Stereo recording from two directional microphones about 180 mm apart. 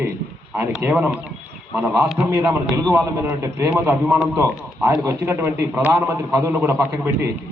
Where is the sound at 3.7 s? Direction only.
5° right (ahead or behind).